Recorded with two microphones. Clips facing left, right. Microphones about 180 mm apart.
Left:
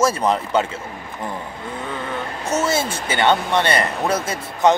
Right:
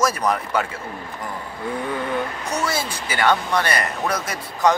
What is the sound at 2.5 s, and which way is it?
Speech, 25° left (ahead or behind).